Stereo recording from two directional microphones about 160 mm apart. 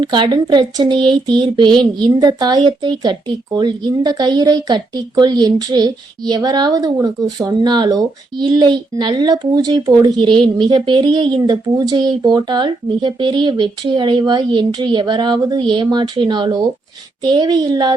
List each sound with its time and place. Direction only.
0.0 s speech: 30° right (ahead or behind)